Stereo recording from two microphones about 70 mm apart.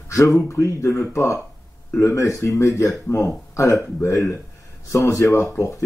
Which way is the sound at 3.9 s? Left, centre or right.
Left.